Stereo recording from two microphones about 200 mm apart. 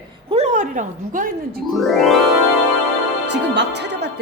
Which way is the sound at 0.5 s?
40° right (ahead or behind).